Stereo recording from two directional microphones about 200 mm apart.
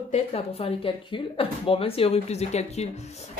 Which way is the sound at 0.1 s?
30° left (ahead or behind).